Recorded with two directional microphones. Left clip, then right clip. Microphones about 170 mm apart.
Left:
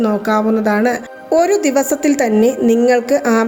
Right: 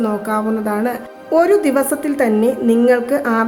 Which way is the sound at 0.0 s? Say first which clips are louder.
Left 4 dB; 20° left (ahead or behind).